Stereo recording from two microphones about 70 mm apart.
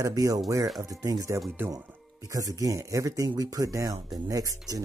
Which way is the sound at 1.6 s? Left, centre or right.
Right.